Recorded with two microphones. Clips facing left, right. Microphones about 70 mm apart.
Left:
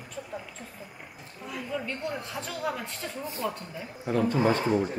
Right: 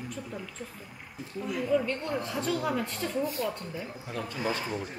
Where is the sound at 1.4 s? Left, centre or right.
Centre.